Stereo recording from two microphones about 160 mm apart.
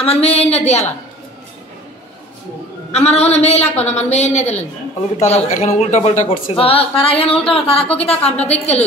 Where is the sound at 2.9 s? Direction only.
40° left (ahead or behind).